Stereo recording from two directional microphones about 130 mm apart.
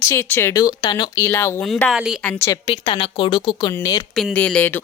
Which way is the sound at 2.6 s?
35° left (ahead or behind).